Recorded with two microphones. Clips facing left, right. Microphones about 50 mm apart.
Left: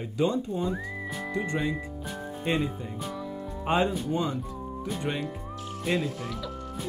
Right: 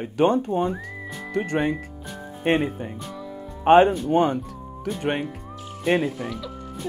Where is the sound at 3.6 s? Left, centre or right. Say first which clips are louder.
Right 11 dB; right.